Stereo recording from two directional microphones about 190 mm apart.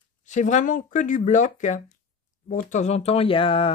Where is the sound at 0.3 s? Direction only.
40° left (ahead or behind).